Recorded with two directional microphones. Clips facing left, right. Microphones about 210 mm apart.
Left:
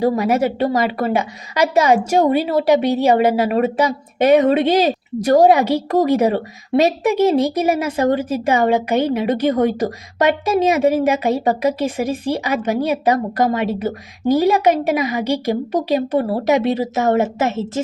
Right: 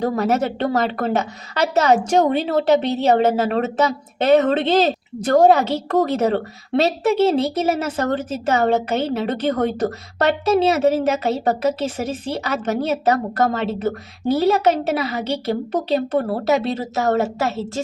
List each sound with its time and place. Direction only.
0.0 s a woman's voice: 10° left (ahead or behind)